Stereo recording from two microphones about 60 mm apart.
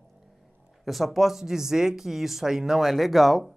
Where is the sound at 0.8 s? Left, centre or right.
Centre.